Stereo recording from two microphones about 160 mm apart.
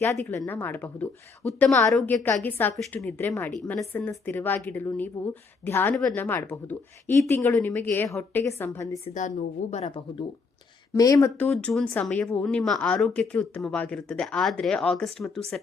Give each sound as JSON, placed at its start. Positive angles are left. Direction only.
{"t": 0.0, "sound": "a woman's voice", "side_deg": 10}
{"t": 1.9, "sound": "a woman's voice", "side_deg": 0}
{"t": 3.9, "sound": "a woman's voice", "side_deg": 15}
{"t": 9.1, "sound": "speech", "side_deg": 50}
{"t": 10.9, "sound": "speech", "side_deg": 20}
{"t": 11.3, "sound": "speech", "side_deg": 10}